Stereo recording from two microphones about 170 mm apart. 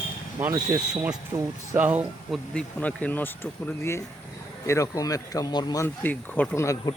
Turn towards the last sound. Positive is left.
turn(degrees=15)  # may be behind; listen again after turning